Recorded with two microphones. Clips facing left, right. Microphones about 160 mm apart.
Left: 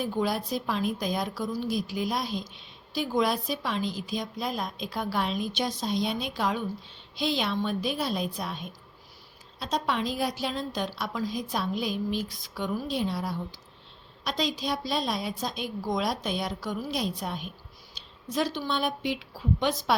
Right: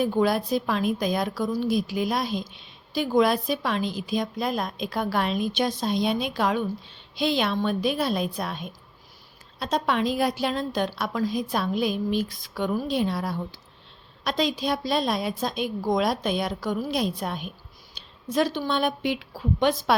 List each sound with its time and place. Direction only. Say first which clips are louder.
0.0 s a woman's voice: right 6 dB; 65° right (ahead or behind)